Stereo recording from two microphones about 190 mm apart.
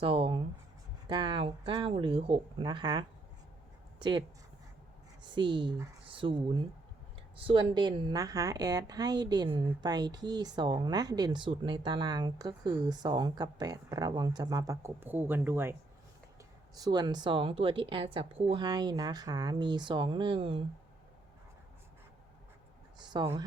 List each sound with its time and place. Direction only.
0.0 s speech: 30° right (ahead or behind)
5.3 s speech: 25° right (ahead or behind)
6.1 s speech: 25° right (ahead or behind)
7.3 s speech: 25° right (ahead or behind); by 15.7 s 10° right (ahead or behind)
16.7 s speech: 20° right (ahead or behind)
23.0 s speech: 25° right (ahead or behind)